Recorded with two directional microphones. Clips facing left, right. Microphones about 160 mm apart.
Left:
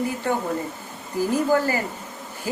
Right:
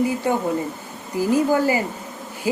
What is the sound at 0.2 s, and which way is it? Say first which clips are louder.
Speech: right 3 dB; 15° right (ahead or behind).